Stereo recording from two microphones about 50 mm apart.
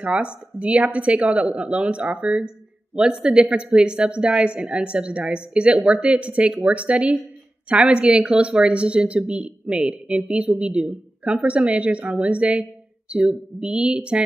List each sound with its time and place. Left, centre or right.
0.0 s speech: right